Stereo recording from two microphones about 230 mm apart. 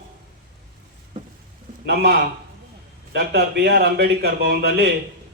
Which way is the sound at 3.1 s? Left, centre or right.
Right.